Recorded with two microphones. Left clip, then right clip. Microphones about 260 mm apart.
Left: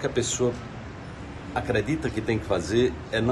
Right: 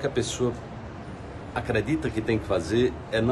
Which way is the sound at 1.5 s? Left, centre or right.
Centre.